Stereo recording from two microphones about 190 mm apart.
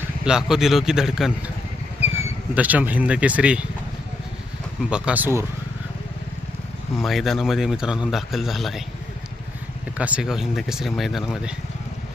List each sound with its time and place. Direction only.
0.3 s a man's voice: 5° right (ahead or behind)
2.6 s speech: 10° right (ahead or behind)
4.9 s speech: 5° right (ahead or behind)
7.0 s a man's voice: centre (ahead or behind)
10.0 s a man's voice: 5° right (ahead or behind)